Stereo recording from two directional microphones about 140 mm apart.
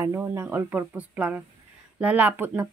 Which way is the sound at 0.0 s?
20° right (ahead or behind).